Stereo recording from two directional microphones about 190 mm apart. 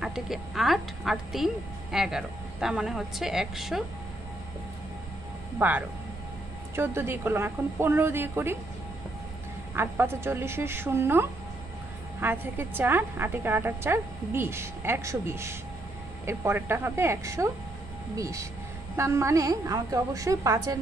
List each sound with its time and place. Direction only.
0.0 s speech: centre (ahead or behind)
5.6 s a woman's voice: 10° right (ahead or behind)
9.8 s a woman's voice: 10° right (ahead or behind)